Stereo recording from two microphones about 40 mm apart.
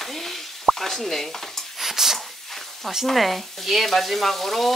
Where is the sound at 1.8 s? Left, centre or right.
Centre.